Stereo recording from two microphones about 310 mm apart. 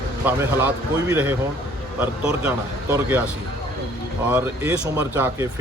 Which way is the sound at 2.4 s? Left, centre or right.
Centre.